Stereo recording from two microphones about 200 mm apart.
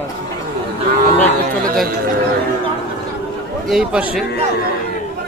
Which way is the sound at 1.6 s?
45° right (ahead or behind).